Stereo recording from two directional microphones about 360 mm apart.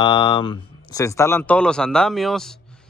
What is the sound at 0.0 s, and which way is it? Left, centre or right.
Speech, centre.